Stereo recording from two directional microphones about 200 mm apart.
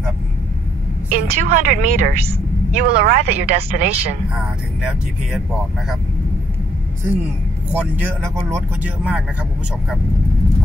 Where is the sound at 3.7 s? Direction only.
35° right (ahead or behind).